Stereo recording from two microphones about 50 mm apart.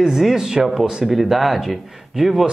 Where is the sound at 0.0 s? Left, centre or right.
Centre.